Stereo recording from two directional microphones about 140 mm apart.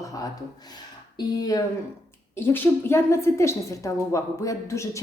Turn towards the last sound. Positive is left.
turn(degrees=20)  # may be behind; listen again after turning